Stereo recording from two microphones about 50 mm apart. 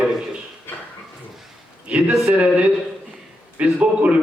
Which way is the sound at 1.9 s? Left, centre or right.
Right.